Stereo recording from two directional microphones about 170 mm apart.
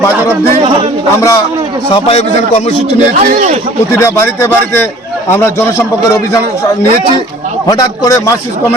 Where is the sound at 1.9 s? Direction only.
40° left (ahead or behind).